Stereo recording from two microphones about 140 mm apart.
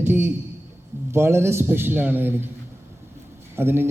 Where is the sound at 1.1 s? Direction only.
20° right (ahead or behind).